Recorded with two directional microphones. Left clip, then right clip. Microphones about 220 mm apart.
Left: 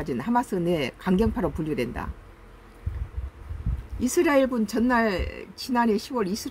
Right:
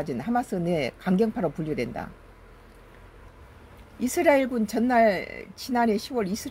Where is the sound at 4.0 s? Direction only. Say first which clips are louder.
Even; 5° right (ahead or behind).